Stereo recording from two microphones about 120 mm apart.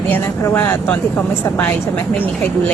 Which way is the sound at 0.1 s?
20° left (ahead or behind).